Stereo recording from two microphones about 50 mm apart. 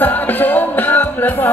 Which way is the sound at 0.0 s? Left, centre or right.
Left.